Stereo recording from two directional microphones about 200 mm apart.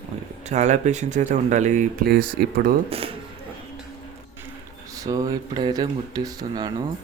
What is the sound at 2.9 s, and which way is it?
Speech, 30° right (ahead or behind).